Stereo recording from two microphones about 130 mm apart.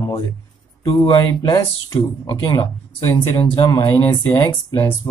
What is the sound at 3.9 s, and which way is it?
Speech, 20° left (ahead or behind).